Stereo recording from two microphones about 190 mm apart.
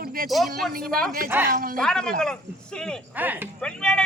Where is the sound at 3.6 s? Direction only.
5° left (ahead or behind).